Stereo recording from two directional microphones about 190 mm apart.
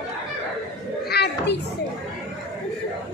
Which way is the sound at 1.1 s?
60° left (ahead or behind).